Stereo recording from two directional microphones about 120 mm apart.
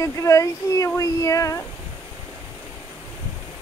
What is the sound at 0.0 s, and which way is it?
Speech, 25° left (ahead or behind).